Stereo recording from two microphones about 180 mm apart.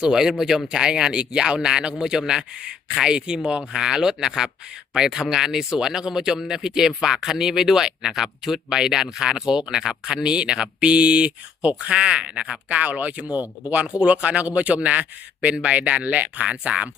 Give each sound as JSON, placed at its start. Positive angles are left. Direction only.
{"t": 0.0, "sound": "speech", "side_deg": -5}